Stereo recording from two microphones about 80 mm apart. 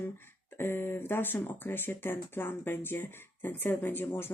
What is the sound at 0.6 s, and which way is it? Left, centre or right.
Speech, left.